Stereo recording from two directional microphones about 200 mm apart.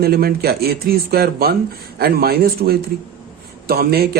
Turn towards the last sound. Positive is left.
turn(degrees=-50)  # may be behind; listen again after turning